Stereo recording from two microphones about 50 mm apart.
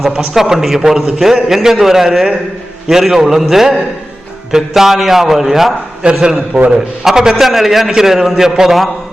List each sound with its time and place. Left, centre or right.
0.3 s a man's voice: centre
6.2 s a man's voice: centre